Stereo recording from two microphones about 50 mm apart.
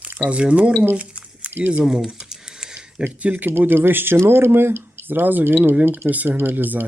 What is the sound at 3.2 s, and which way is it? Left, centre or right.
Speech, right.